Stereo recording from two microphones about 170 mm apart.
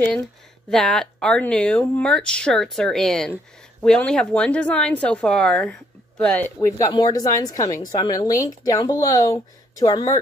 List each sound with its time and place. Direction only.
0.7 s speech: 5° left (ahead or behind)
6.6 s a woman's voice: 20° left (ahead or behind)